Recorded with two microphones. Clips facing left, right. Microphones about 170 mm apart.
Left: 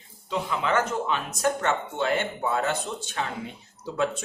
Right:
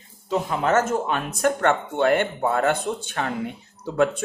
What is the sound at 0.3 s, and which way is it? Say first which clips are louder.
Speech: right 5 dB; 45° right (ahead or behind).